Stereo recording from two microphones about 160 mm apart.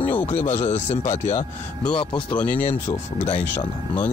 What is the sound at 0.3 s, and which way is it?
Speech, 40° left (ahead or behind).